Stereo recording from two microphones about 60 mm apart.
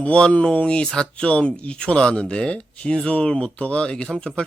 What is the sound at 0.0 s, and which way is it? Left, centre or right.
A man's voice, centre.